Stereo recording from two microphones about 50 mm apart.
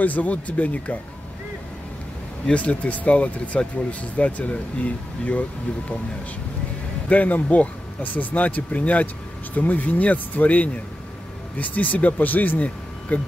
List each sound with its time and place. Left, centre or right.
0.0 s speech: left
2.4 s speech: left
7.1 s speech: left